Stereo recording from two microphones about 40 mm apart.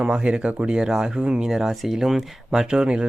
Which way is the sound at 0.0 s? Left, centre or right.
Right.